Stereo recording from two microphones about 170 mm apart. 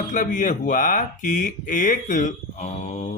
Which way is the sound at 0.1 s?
50° left (ahead or behind).